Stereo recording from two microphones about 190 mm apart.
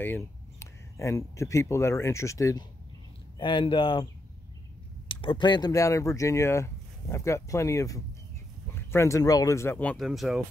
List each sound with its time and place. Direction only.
0.0 s speech: 15° left (ahead or behind)